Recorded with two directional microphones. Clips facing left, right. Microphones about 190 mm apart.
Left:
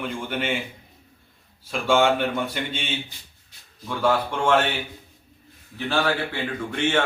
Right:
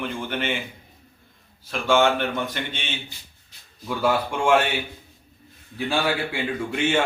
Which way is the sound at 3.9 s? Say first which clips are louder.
Even; 10° right (ahead or behind).